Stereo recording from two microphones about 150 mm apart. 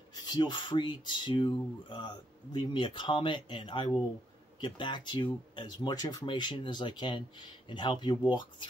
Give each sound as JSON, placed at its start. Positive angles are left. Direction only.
{"t": 0.1, "sound": "speech", "side_deg": 30}